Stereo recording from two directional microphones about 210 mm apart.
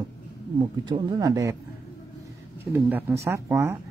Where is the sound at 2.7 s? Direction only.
10° right (ahead or behind).